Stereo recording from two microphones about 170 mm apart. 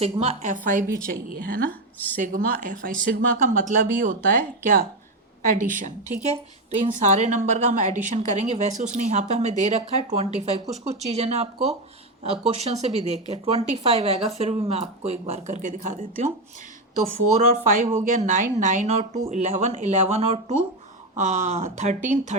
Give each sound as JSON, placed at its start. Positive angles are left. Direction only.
{"t": 0.0, "sound": "a woman's voice", "side_deg": -40}
{"t": 17.5, "sound": "a woman's voice", "side_deg": -50}